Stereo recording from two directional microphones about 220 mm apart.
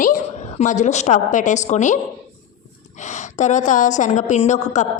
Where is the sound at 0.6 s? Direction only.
35° left (ahead or behind).